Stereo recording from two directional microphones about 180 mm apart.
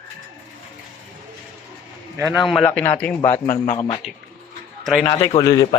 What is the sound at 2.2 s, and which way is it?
A man's voice, centre (ahead or behind).